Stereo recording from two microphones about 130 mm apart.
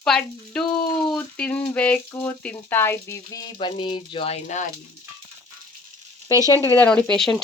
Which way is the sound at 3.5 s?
40° left (ahead or behind).